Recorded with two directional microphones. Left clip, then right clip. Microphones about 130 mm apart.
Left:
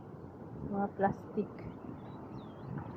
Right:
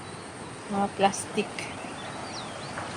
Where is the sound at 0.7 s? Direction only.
35° right (ahead or behind).